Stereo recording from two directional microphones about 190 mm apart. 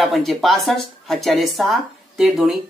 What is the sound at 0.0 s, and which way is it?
Speech, centre (ahead or behind).